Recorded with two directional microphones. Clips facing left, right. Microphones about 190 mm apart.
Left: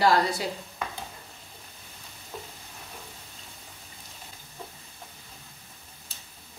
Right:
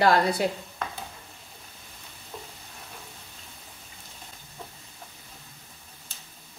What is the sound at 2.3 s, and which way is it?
Sizzle, 5° left (ahead or behind).